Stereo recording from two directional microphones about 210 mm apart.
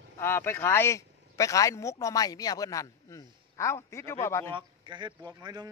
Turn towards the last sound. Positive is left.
turn(degrees=-20)  # may be behind; listen again after turning